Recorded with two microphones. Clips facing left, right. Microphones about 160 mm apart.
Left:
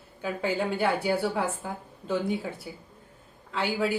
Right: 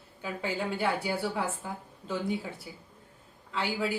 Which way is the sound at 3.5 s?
55° left (ahead or behind).